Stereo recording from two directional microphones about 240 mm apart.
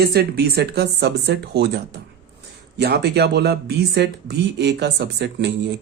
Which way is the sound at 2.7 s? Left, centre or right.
Right.